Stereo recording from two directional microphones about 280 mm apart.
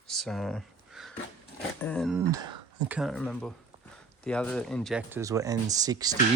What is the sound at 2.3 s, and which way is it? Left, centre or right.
Speech, centre.